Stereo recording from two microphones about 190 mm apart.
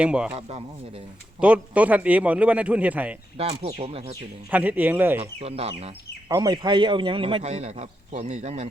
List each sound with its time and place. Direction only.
0.0 s speech: 5° right (ahead or behind)
1.4 s a man's voice: 5° right (ahead or behind)
3.3 s speech: 30° right (ahead or behind)
4.5 s a man's voice: 10° right (ahead or behind)
5.4 s speech: 30° right (ahead or behind)
6.3 s a man's voice: 20° right (ahead or behind); by 8.6 s 35° right (ahead or behind)